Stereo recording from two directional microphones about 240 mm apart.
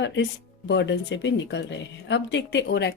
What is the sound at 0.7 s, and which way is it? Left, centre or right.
A woman's voice, left.